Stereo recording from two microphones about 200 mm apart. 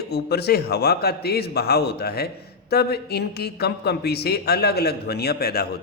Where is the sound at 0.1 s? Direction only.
55° left (ahead or behind).